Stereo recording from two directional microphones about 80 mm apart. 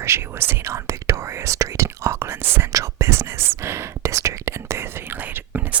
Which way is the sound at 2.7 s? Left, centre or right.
Right.